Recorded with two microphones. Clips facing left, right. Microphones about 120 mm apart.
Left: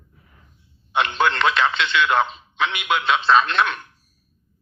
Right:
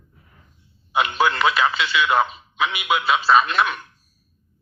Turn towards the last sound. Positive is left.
turn(degrees=-5)  # may be behind; listen again after turning